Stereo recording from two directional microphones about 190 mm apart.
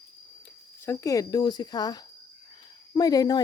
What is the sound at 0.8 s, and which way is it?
Speech, 15° left (ahead or behind).